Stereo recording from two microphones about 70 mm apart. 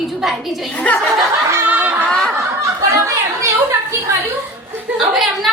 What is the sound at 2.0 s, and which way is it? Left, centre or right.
Snicker, centre.